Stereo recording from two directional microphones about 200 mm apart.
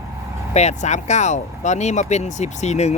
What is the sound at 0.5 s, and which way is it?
Speech, 35° left (ahead or behind).